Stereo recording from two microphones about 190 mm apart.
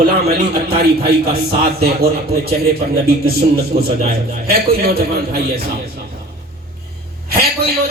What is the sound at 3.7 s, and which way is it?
A man's voice, 45° right (ahead or behind).